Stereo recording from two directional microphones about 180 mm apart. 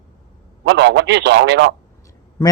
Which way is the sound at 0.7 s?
75° right (ahead or behind).